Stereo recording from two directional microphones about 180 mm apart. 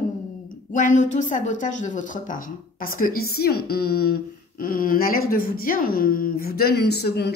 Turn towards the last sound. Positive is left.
turn(degrees=65)  # may be behind; listen again after turning